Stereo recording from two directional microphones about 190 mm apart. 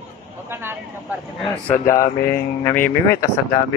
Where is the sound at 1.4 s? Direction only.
10° left (ahead or behind).